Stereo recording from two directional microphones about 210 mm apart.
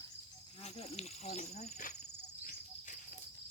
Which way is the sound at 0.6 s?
30° left (ahead or behind).